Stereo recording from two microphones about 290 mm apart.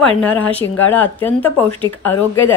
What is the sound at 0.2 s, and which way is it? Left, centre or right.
A woman's voice, centre.